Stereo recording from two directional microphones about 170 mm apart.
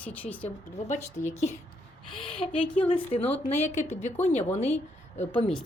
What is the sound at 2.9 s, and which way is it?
A woman's voice, 35° left (ahead or behind).